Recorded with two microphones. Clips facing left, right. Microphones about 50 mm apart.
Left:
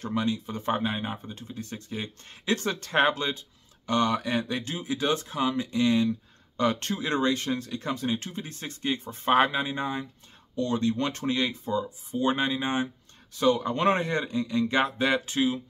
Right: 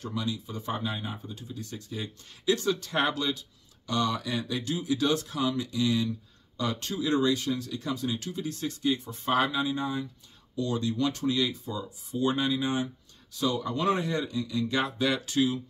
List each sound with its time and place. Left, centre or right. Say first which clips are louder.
0.0 s speech: left 5 dB; left